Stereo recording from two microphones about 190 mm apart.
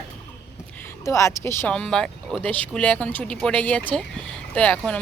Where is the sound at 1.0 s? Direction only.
15° left (ahead or behind).